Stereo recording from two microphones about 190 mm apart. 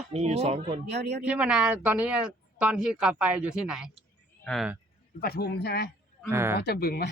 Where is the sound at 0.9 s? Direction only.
60° right (ahead or behind).